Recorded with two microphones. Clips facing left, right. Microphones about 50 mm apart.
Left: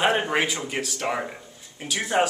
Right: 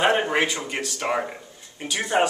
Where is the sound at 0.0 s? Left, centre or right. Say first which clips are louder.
Right 2 dB; centre.